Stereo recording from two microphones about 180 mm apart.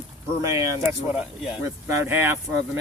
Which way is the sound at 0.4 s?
15° right (ahead or behind).